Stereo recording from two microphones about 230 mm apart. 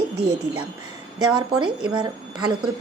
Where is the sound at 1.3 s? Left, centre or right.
Centre.